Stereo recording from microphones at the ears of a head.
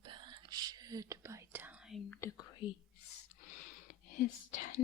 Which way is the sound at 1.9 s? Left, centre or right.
Left.